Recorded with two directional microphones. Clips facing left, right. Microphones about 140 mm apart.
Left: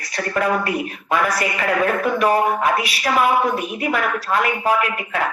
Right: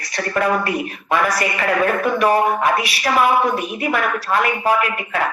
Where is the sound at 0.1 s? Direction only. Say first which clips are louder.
Right 1 dB; 75° right (ahead or behind).